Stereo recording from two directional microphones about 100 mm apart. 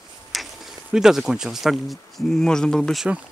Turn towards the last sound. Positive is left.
turn(degrees=0)  # may be behind; listen again after turning